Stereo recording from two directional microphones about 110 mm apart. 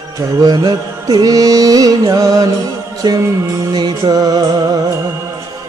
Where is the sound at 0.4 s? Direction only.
35° right (ahead or behind).